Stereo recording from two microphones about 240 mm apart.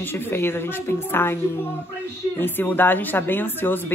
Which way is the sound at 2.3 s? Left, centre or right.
Centre.